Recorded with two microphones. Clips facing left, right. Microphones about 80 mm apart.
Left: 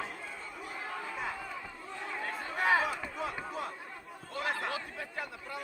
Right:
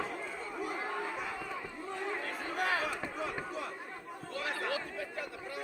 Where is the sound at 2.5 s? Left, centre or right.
Left.